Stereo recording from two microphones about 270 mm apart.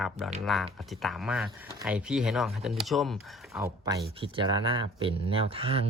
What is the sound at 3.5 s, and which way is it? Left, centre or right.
Speech, centre.